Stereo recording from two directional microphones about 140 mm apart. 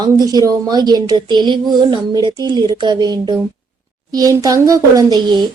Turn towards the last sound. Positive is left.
turn(degrees=-30)  # may be behind; listen again after turning